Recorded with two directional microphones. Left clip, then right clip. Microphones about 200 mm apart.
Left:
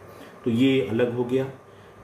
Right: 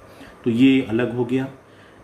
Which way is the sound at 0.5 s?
50° right (ahead or behind).